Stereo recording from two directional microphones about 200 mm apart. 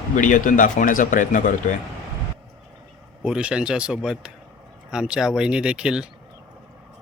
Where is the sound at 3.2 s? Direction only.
5° right (ahead or behind).